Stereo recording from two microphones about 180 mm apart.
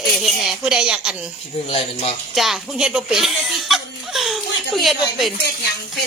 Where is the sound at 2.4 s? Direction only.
Centre (ahead or behind).